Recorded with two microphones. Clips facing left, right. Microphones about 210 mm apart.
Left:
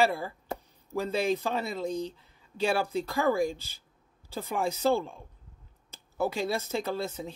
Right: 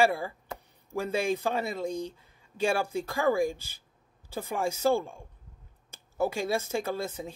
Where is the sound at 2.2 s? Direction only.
50° right (ahead or behind).